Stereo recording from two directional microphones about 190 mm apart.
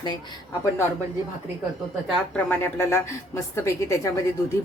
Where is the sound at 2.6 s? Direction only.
15° left (ahead or behind).